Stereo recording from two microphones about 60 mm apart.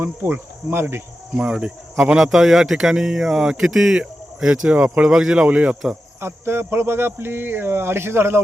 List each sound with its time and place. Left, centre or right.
0.0 s cricket: right
1.5 s speech: centre
6.1 s speech: right